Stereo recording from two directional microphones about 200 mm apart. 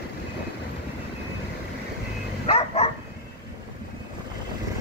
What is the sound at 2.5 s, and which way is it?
Bow-wow, 30° left (ahead or behind).